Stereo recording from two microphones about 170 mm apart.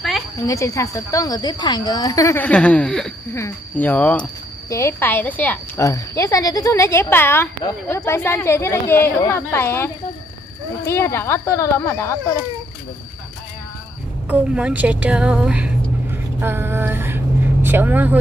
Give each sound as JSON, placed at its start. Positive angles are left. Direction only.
{"t": 0.4, "sound": "a woman's voice", "side_deg": 20}
{"t": 10.9, "sound": "speech", "side_deg": 15}
{"t": 14.3, "sound": "a woman's voice", "side_deg": -10}